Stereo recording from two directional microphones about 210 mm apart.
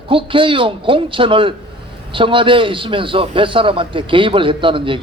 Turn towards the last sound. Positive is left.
turn(degrees=-25)  # may be behind; listen again after turning